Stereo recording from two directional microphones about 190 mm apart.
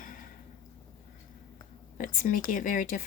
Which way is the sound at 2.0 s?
45° left (ahead or behind).